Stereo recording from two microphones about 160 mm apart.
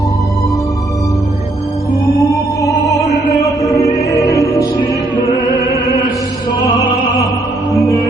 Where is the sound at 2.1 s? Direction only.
20° left (ahead or behind).